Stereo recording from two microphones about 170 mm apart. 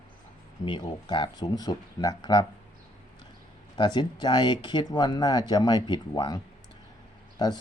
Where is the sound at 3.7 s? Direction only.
25° left (ahead or behind).